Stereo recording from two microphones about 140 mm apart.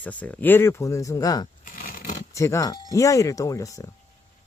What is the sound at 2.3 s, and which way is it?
Speech, 20° left (ahead or behind).